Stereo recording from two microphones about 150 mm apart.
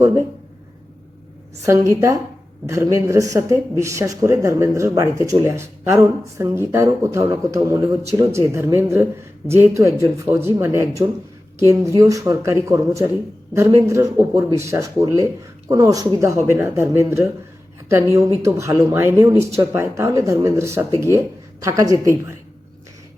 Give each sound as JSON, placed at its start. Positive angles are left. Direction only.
{"t": 1.6, "sound": "speech", "side_deg": -20}